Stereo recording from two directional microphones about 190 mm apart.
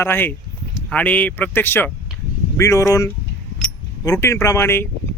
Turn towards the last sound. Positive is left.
turn(degrees=15)  # may be behind; listen again after turning